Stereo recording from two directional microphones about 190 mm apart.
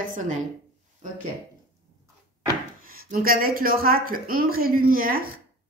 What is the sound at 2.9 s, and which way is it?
A woman's voice, 50° right (ahead or behind).